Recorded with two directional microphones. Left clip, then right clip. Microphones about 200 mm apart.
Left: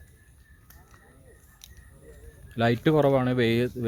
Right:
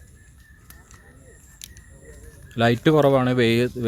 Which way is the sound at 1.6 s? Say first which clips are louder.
Right 9 dB; 20° right (ahead or behind).